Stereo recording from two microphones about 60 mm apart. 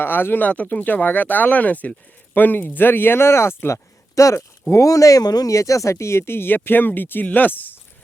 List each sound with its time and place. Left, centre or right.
0.0 s speech: left